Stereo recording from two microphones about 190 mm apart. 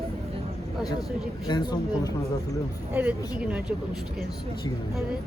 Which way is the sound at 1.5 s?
20° left (ahead or behind).